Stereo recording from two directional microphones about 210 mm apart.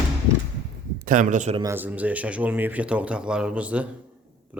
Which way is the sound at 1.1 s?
35° right (ahead or behind).